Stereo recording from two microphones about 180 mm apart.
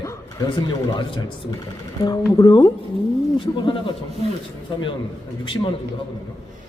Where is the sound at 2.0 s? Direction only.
20° left (ahead or behind).